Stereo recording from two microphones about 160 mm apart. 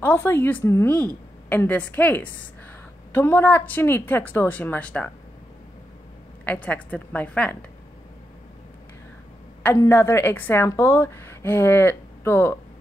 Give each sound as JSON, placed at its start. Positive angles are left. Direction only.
{"t": 0.0, "sound": "a woman's voice", "side_deg": 15}
{"t": 6.4, "sound": "a woman's voice", "side_deg": 10}
{"t": 9.6, "sound": "a woman's voice", "side_deg": 10}